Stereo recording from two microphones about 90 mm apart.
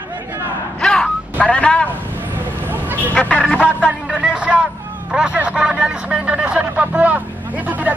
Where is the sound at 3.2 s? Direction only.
15° left (ahead or behind).